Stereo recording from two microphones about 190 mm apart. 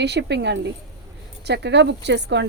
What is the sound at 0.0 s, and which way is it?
A woman's voice, 65° right (ahead or behind).